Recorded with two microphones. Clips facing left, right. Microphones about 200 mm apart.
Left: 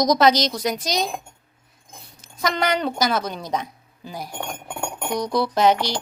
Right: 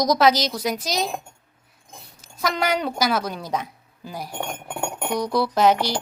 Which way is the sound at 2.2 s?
5° right (ahead or behind).